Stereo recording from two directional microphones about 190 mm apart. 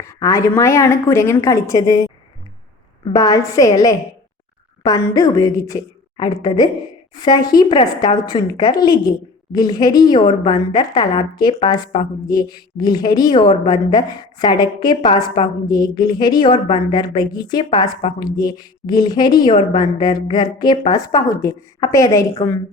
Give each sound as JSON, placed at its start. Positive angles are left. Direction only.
{"t": 0.0, "sound": "a woman's voice", "side_deg": 15}